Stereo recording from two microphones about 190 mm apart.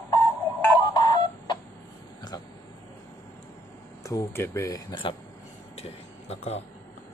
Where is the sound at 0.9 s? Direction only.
25° left (ahead or behind).